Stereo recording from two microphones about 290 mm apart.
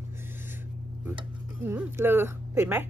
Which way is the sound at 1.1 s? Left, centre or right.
Centre.